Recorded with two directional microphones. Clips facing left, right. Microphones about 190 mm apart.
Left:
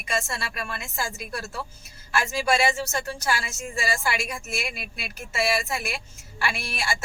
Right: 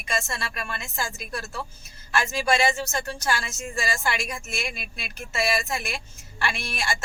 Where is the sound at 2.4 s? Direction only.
10° left (ahead or behind).